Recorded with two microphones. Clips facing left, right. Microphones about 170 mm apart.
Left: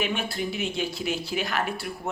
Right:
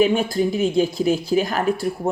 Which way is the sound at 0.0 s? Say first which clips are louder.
Right 11 dB; 35° right (ahead or behind).